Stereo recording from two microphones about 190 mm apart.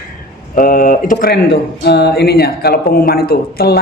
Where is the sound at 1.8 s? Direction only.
60° left (ahead or behind).